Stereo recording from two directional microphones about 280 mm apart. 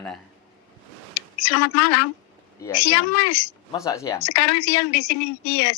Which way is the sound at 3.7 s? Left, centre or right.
Centre.